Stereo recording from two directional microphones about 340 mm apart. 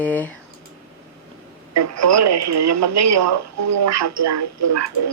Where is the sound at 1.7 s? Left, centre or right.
Right.